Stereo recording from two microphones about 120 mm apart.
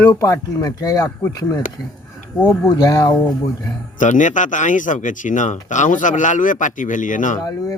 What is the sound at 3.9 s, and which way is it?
Speech, 90° left.